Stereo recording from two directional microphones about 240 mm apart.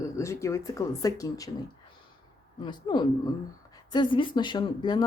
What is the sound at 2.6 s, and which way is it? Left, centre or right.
Speech, centre.